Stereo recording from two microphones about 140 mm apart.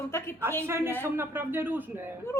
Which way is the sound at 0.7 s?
15° right (ahead or behind).